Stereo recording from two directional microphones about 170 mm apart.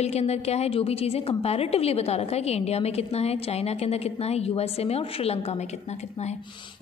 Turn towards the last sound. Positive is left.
turn(degrees=35)  # may be behind; listen again after turning